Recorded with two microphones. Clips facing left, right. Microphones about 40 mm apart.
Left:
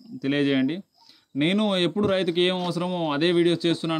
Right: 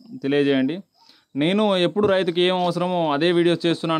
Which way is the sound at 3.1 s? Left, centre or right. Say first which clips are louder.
Right 1 dB; centre.